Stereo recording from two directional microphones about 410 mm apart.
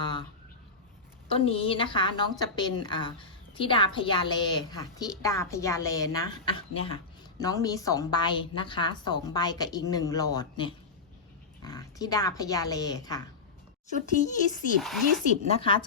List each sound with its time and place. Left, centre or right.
0.0 s a sound: centre
1.3 s a woman's voice: centre
14.8 s speech: centre
15.4 s a woman's voice: centre